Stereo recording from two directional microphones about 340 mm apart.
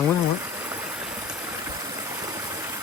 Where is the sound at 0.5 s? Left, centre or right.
Centre.